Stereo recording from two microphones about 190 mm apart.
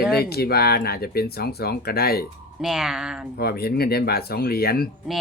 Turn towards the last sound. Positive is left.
turn(degrees=55)  # may be behind; listen again after turning